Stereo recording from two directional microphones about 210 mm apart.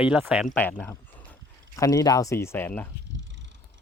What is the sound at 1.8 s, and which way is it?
Speech, 15° left (ahead or behind).